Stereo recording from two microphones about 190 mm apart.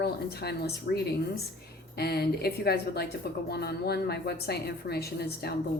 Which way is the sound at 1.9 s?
55° left (ahead or behind).